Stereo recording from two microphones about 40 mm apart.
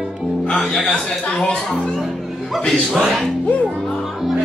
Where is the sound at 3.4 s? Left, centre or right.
Left.